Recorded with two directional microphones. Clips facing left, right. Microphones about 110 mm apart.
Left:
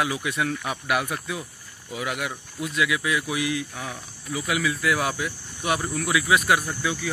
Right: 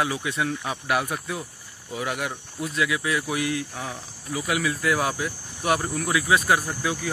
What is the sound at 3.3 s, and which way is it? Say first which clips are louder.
Speech: even; 45° right (ahead or behind).